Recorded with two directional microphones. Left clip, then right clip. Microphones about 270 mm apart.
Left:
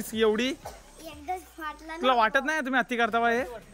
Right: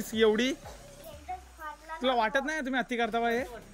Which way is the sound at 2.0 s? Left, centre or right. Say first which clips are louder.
Left 5 dB; centre.